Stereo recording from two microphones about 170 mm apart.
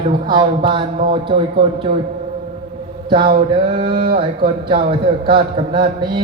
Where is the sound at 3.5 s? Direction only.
30° right (ahead or behind).